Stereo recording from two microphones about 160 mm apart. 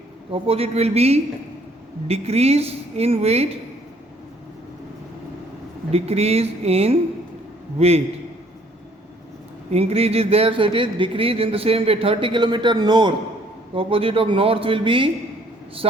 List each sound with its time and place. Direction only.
0.3 s speech: 35° right (ahead or behind)
5.9 s speech: 40° right (ahead or behind)
9.7 s speech: 40° right (ahead or behind)